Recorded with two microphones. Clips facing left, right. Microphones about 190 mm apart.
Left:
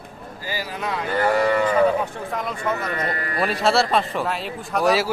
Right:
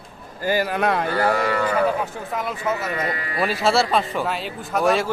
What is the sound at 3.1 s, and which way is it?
Speech, 45° left (ahead or behind).